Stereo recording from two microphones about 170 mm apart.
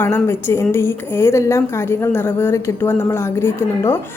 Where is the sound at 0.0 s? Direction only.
15° left (ahead or behind).